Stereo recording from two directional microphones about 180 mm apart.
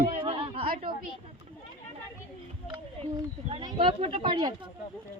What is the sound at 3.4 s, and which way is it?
Speech, 30° right (ahead or behind).